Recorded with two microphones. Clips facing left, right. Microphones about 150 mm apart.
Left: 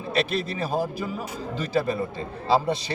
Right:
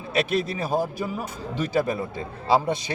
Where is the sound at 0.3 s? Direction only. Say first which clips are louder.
Right 2 dB; 10° right (ahead or behind).